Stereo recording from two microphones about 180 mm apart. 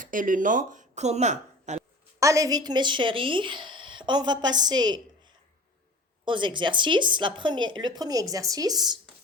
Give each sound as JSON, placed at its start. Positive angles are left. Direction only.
{"t": 0.0, "sound": "speech", "side_deg": -45}
{"t": 2.1, "sound": "a woman's voice", "side_deg": -15}